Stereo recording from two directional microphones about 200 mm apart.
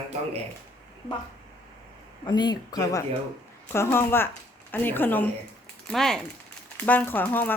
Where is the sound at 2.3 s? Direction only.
20° left (ahead or behind).